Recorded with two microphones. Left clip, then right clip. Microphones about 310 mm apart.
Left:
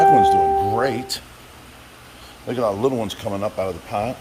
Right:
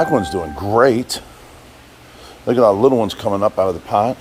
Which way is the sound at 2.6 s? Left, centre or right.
Right.